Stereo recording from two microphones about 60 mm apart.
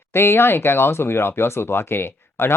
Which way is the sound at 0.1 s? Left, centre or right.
Left.